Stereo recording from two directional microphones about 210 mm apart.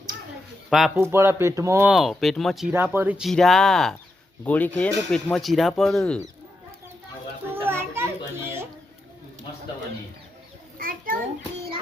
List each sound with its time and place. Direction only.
0.7 s speech: centre (ahead or behind)
1.9 s speech: centre (ahead or behind)
2.7 s speech: 10° right (ahead or behind)
7.5 s children playing: 10° right (ahead or behind)
10.8 s children playing: 40° right (ahead or behind)